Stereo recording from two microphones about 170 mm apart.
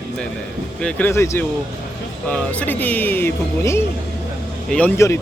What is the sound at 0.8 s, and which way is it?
Speech, 5° left (ahead or behind).